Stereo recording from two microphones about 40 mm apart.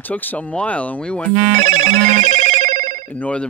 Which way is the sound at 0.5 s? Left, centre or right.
Left.